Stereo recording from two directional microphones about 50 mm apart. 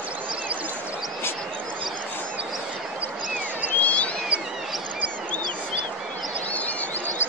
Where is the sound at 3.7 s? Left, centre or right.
Left.